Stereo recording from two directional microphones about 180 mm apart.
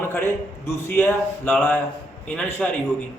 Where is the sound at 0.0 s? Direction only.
15° left (ahead or behind).